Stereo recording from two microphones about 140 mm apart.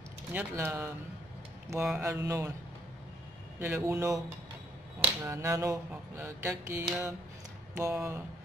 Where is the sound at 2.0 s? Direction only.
20° right (ahead or behind).